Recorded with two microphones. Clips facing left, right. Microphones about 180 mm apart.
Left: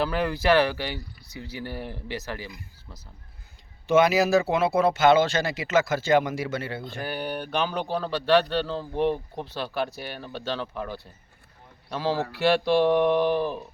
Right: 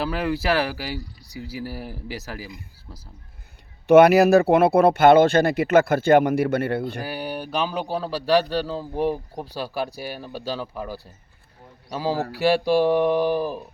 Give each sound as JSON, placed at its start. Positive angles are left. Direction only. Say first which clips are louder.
{"t": 0.0, "sound": "mantra", "louder": "even", "side_deg": 0}
{"t": 3.8, "sound": "speech", "louder": "right 7 dB", "side_deg": -65}
{"t": 7.0, "sound": "mantra", "louder": "right 1 dB", "side_deg": -5}
{"t": 8.4, "sound": "a man's voice", "louder": "right 2 dB", "side_deg": -10}
{"t": 12.1, "sound": "a sound", "louder": "right 2 dB", "side_deg": -35}
{"t": 12.4, "sound": "speech", "louder": "right 2 dB", "side_deg": -10}